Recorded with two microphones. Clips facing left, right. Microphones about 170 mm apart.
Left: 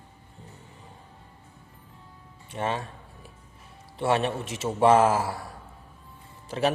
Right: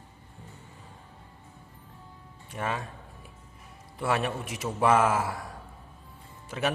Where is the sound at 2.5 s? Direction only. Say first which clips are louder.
Left 3 dB; 30° left (ahead or behind).